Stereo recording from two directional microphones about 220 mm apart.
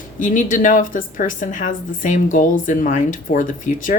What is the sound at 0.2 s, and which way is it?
A woman's voice, 35° left (ahead or behind).